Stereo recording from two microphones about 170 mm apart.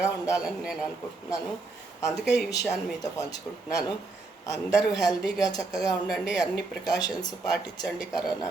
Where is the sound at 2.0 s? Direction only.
Centre (ahead or behind).